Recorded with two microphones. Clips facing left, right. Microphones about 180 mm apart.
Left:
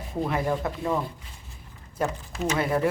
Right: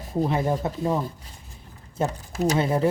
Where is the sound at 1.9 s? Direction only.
30° right (ahead or behind).